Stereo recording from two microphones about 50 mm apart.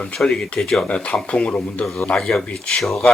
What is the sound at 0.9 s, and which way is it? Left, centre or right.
Speech, left.